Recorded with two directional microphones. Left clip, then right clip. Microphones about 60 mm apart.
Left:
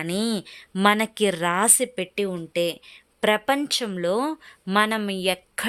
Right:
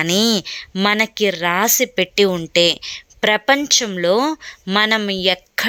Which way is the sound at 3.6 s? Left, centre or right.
Centre.